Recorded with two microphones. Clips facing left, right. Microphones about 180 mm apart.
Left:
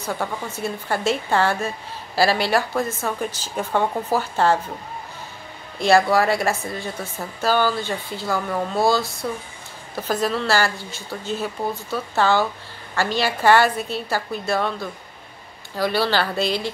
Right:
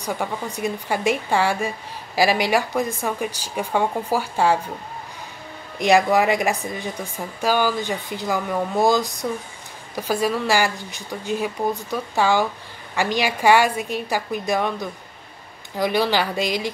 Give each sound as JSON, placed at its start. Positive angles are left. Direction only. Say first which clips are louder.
{"t": 0.0, "sound": "a woman's voice", "louder": "right 1 dB", "side_deg": -15}
{"t": 5.8, "sound": "a woman's voice", "louder": "even", "side_deg": -15}